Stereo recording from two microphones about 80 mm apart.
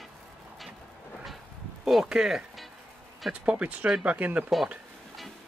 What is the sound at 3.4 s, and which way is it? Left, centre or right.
Speech, centre.